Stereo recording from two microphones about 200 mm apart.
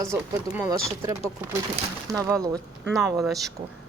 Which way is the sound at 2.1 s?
15° right (ahead or behind).